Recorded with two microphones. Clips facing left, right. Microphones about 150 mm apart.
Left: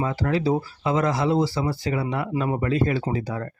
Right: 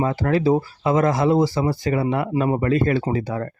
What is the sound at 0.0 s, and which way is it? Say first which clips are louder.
A man's voice: right 4 dB; 50° right (ahead or behind).